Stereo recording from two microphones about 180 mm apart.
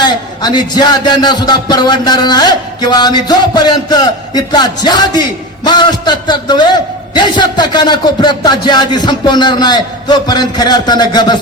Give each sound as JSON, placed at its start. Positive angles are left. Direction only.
{"t": 0.0, "sound": "a man's voice", "side_deg": 25}